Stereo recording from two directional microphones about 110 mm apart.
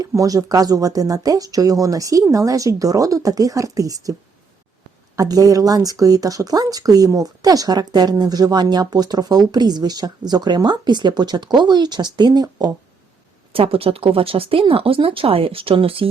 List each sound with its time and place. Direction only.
0.0 s speech: 30° right (ahead or behind)
5.1 s speech: 35° right (ahead or behind)
13.5 s speech: 55° right (ahead or behind)